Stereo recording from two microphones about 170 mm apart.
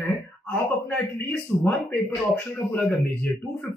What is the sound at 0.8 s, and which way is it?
A man's voice, 10° left (ahead or behind).